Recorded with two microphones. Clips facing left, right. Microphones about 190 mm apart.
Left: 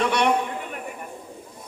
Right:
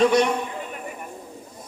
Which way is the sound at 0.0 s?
65° left (ahead or behind).